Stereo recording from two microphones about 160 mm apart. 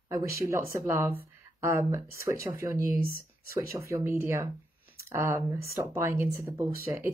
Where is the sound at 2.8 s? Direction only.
60° right (ahead or behind).